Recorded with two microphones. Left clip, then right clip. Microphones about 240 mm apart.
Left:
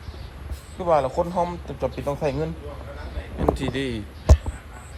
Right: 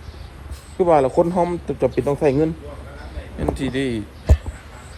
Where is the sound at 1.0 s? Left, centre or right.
Right.